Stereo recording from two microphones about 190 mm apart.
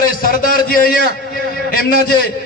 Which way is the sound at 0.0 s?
50° left (ahead or behind).